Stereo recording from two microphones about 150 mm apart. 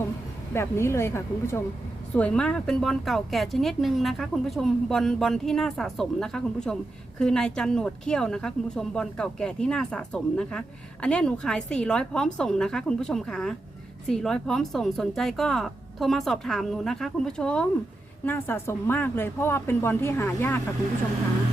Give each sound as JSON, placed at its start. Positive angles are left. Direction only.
{"t": 0.5, "sound": "a woman's voice", "side_deg": 15}